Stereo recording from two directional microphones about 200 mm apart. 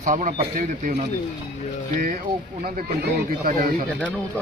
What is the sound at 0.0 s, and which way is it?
Speech, 40° right (ahead or behind).